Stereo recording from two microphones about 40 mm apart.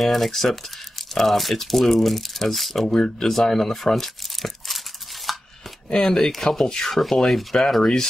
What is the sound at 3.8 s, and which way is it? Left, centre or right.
Crumpling, centre.